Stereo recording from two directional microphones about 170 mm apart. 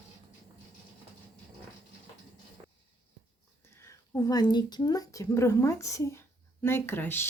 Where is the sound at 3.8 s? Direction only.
15° left (ahead or behind).